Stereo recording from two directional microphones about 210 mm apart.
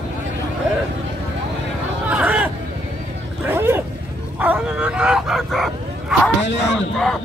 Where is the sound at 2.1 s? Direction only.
5° right (ahead or behind).